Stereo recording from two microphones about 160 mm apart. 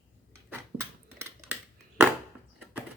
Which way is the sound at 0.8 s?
20° right (ahead or behind).